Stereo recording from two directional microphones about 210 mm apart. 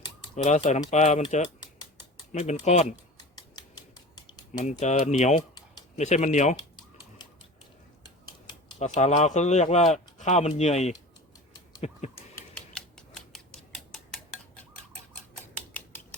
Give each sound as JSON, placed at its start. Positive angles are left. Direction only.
{"t": 0.0, "sound": "speech", "side_deg": 35}
{"t": 4.6, "sound": "speech", "side_deg": 35}
{"t": 5.4, "sound": "a sound", "side_deg": 20}
{"t": 6.0, "sound": "speech", "side_deg": 35}
{"t": 8.0, "sound": "speech", "side_deg": 30}
{"t": 12.1, "sound": "typewriter", "side_deg": 5}
{"t": 15.5, "sound": "typing", "side_deg": 10}